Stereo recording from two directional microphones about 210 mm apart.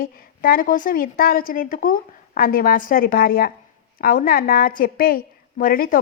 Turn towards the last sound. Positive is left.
turn(degrees=40)  # may be behind; listen again after turning